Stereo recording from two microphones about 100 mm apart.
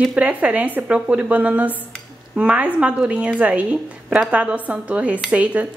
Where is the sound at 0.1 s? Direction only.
15° right (ahead or behind).